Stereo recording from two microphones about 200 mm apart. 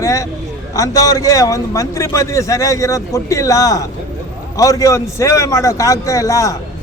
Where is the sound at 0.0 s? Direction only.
15° left (ahead or behind).